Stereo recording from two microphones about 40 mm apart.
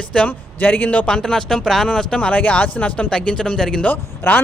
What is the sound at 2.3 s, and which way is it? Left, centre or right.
Speech, left.